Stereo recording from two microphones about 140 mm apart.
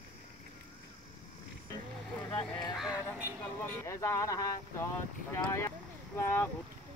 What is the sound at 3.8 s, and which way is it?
Speech, 20° left (ahead or behind).